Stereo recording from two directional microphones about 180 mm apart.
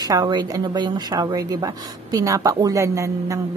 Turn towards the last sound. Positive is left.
turn(degrees=-15)  # may be behind; listen again after turning